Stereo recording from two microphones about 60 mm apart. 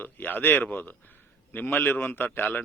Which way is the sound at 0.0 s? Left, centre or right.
Left.